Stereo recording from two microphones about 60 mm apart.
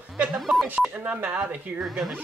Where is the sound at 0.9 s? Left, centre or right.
Right.